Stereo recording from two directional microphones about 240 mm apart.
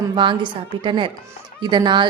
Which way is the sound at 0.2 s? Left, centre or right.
Right.